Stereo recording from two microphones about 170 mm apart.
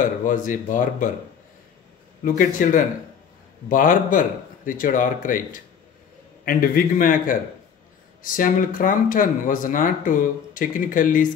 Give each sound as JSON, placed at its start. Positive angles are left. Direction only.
{"t": 0.0, "sound": "speech", "side_deg": 50}
{"t": 2.2, "sound": "a man's voice", "side_deg": 50}